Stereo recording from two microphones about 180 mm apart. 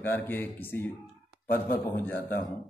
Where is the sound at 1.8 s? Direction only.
10° left (ahead or behind).